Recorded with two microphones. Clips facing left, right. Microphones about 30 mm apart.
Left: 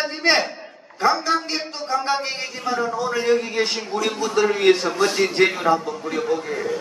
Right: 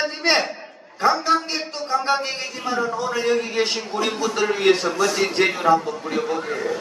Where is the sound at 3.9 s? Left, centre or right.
Right.